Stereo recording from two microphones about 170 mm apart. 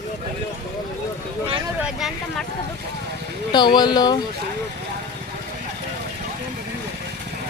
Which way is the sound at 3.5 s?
25° left (ahead or behind).